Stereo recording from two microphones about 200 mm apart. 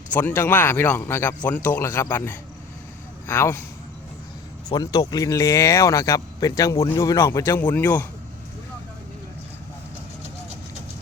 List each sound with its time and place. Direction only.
0.1 s speech: 10° left (ahead or behind)
4.7 s speech: 20° left (ahead or behind)